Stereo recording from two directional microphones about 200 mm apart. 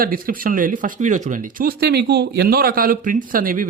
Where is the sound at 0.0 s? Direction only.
45° right (ahead or behind).